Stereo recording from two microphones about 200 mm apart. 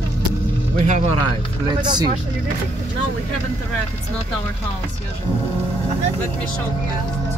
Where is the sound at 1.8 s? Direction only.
20° right (ahead or behind).